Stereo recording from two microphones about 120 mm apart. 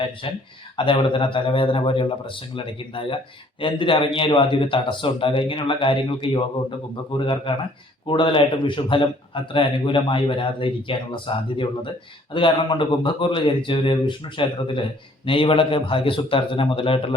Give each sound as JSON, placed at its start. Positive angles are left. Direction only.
{"t": 0.2, "sound": "a man's voice", "side_deg": 50}